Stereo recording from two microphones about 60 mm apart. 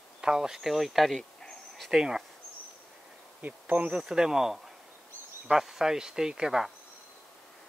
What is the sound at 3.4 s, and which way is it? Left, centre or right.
Bee, right.